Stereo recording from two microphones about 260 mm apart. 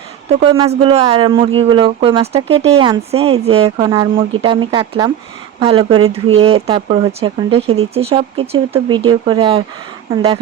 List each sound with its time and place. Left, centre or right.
0.3 s speech: right